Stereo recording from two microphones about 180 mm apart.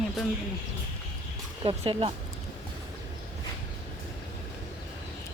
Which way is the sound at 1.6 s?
35° right (ahead or behind).